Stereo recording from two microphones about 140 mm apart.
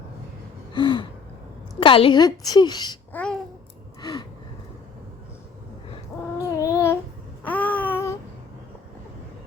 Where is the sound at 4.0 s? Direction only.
30° left (ahead or behind).